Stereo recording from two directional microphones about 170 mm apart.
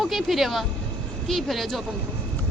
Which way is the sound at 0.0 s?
Centre (ahead or behind).